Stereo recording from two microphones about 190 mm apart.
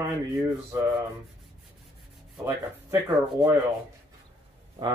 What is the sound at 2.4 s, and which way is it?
Speech, 20° right (ahead or behind).